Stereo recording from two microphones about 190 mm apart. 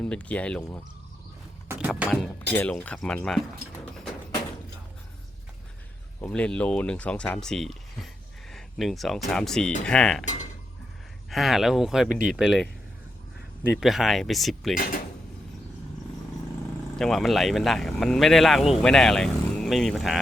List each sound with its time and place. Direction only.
0.0 s speech: 5° left (ahead or behind)
1.6 s speech: 10° right (ahead or behind)
2.6 s speech: 5° left (ahead or behind)
6.1 s speech: 10° left (ahead or behind)
11.3 s speech: centre (ahead or behind)
13.7 s speech: centre (ahead or behind)
17.0 s speech: centre (ahead or behind)